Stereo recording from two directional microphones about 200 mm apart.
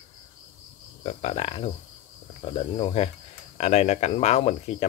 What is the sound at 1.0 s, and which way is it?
Speech, 30° left (ahead or behind).